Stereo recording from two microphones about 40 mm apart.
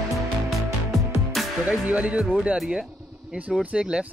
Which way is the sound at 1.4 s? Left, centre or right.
Centre.